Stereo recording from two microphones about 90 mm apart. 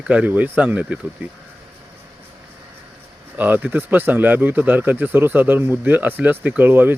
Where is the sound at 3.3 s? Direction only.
20° right (ahead or behind).